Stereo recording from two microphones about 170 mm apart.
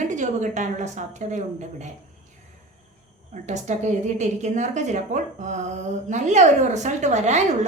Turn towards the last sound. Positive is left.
turn(degrees=-45)  # may be behind; listen again after turning